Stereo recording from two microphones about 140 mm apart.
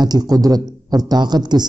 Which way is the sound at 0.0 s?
30° right (ahead or behind).